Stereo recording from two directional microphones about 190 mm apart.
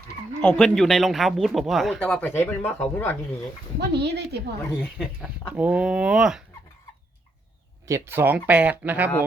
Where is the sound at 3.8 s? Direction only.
60° right (ahead or behind).